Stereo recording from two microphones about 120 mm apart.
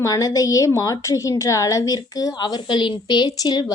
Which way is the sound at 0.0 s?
30° left (ahead or behind).